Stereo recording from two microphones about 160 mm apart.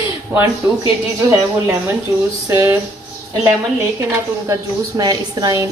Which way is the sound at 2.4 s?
15° right (ahead or behind).